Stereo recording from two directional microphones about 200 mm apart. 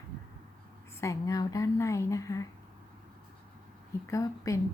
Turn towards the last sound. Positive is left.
turn(degrees=15)  # may be behind; listen again after turning